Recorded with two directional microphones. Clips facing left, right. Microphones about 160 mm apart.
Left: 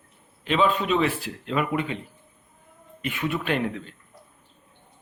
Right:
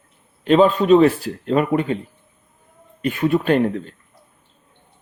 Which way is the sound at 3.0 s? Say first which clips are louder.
Right 9 dB; 40° right (ahead or behind).